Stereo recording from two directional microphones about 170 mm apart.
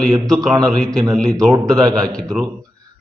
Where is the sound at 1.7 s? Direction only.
20° right (ahead or behind).